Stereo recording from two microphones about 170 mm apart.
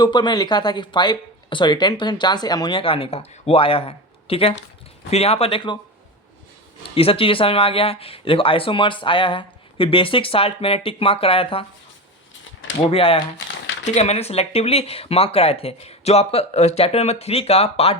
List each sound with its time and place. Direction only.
0.0 s speech: 25° left (ahead or behind)
6.9 s speech: 35° left (ahead or behind)
12.9 s speech: 35° left (ahead or behind)